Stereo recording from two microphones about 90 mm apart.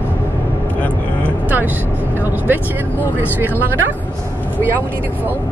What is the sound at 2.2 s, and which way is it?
Speech, 20° right (ahead or behind).